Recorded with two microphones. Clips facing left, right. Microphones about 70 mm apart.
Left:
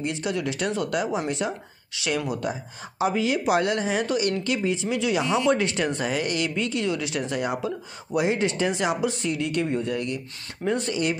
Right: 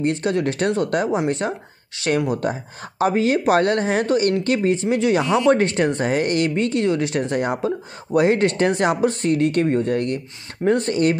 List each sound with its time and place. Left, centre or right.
0.0 s speech: right